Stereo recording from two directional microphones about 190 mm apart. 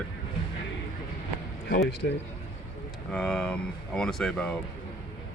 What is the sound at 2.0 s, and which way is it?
Speech, 60° left (ahead or behind).